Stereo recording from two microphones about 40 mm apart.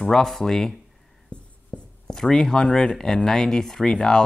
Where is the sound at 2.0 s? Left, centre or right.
Centre.